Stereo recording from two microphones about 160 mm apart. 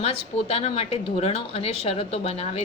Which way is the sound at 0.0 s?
40° left (ahead or behind).